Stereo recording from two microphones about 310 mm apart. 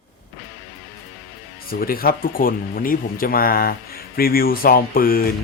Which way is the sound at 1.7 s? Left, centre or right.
Left.